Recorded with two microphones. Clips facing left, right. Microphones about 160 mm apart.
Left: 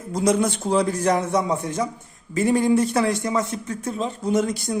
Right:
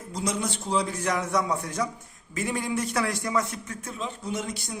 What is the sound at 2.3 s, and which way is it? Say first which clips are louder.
A man's voice: left 10 dB; 35° left (ahead or behind).